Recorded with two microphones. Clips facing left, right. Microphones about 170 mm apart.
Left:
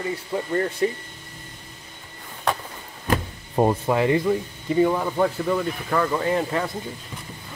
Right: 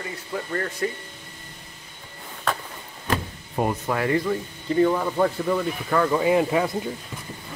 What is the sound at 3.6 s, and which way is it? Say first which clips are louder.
Speech: left 5 dB; 25° left (ahead or behind).